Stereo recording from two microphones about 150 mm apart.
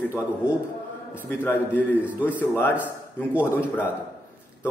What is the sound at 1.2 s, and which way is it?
A man's voice, 15° left (ahead or behind).